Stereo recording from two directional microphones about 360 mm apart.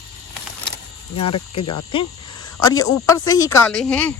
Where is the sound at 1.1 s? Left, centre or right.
Left.